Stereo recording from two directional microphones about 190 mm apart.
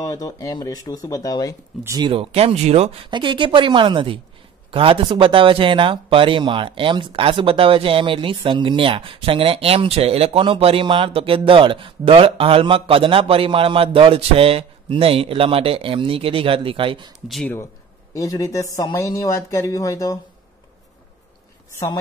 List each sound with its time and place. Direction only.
0.0 s speech: 20° left (ahead or behind)
1.9 s speech: 25° right (ahead or behind)
17.3 s speech: 5° left (ahead or behind)
18.1 s speech: 15° left (ahead or behind)